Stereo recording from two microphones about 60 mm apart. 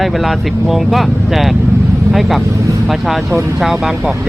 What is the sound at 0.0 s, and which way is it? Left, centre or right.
Speech, centre.